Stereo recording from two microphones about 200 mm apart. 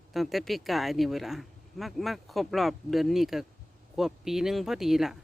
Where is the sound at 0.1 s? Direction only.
Centre (ahead or behind).